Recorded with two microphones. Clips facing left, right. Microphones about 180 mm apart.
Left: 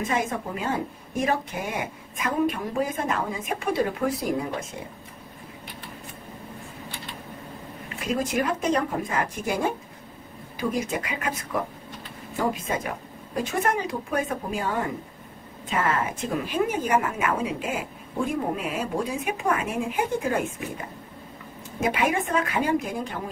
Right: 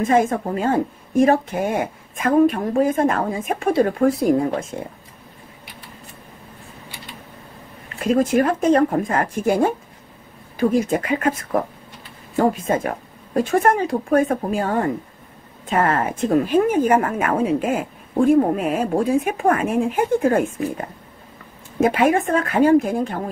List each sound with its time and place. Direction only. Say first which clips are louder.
0.0 s a woman's voice: right 9 dB; 50° right (ahead or behind)
8.0 s a woman's voice: right 9 dB; 50° right (ahead or behind)
21.8 s a woman's voice: right 7 dB; 50° right (ahead or behind)